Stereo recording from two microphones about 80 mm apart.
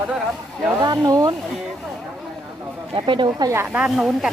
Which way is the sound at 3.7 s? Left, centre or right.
Centre.